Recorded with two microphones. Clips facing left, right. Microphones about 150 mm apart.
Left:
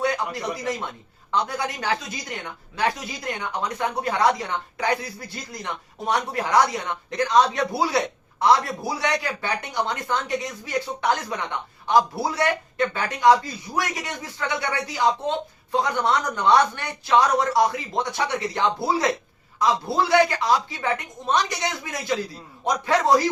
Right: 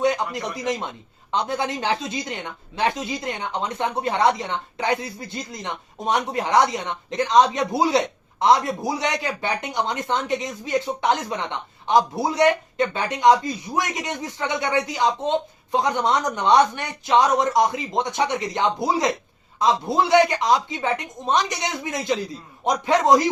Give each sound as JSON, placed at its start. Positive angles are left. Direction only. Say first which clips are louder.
{"t": 0.0, "sound": "a woman's voice", "louder": "right 3 dB", "side_deg": -20}